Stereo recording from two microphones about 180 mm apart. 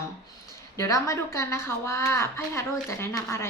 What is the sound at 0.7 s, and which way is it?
A woman's voice, 15° left (ahead or behind).